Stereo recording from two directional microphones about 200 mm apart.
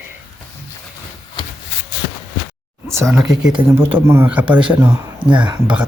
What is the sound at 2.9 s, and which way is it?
Speech, 15° right (ahead or behind).